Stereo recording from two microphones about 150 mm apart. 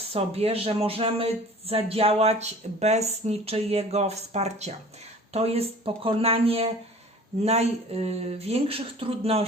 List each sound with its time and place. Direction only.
0.1 s speech: 45° right (ahead or behind)